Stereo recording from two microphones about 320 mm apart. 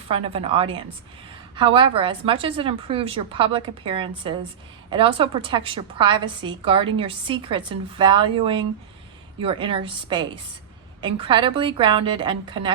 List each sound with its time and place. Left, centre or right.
0.1 s a woman's voice: centre